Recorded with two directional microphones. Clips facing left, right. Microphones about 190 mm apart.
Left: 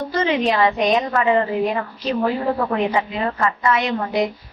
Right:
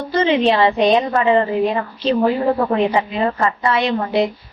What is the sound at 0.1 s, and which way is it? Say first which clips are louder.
A woman's voice: right 5 dB; 25° right (ahead or behind).